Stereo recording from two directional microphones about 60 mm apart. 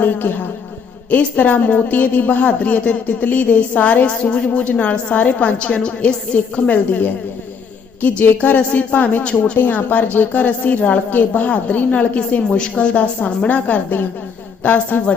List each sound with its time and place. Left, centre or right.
0.0 s a woman's voice: left